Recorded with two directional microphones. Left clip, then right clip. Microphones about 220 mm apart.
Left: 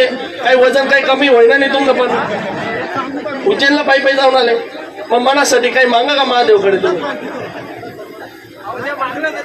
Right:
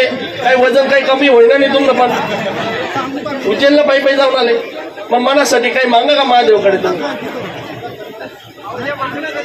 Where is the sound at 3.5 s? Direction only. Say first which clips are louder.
Right 3 dB; 50° left (ahead or behind).